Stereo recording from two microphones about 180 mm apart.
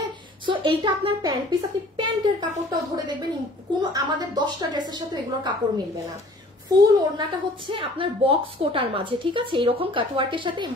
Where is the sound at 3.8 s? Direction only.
25° right (ahead or behind).